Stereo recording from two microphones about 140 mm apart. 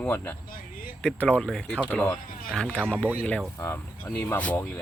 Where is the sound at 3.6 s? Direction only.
20° left (ahead or behind).